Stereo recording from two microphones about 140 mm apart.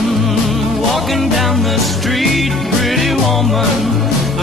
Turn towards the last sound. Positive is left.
turn(degrees=0)  # may be behind; listen again after turning